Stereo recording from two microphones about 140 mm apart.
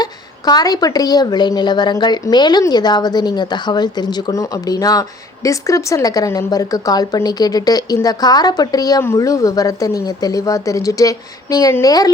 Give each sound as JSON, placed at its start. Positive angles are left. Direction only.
{"t": 0.0, "sound": "a woman's voice", "side_deg": 30}